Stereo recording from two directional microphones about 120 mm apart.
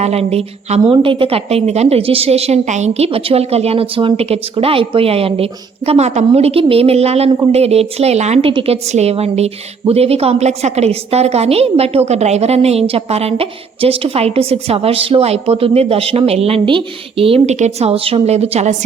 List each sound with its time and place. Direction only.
0.0 s a woman's voice: 60° right (ahead or behind)
0.9 s a woman's voice: 45° right (ahead or behind); by 18.8 s 65° right (ahead or behind)